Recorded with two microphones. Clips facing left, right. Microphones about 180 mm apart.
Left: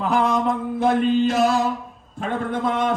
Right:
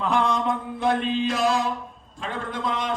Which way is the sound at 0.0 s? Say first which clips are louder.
Left 3 dB; 5° left (ahead or behind).